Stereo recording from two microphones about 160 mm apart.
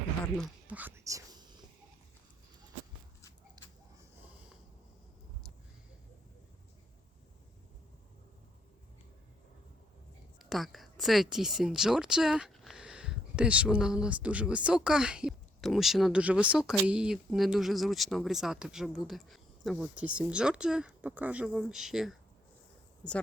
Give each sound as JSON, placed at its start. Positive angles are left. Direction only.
{"t": 0.7, "sound": "speech", "side_deg": -10}
{"t": 3.6, "sound": "a sound", "side_deg": -25}
{"t": 10.3, "sound": "speech", "side_deg": 0}